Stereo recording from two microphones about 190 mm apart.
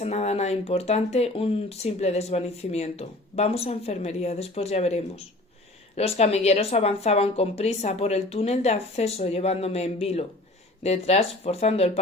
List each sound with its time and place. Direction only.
0.0 s speech: 35° left (ahead or behind)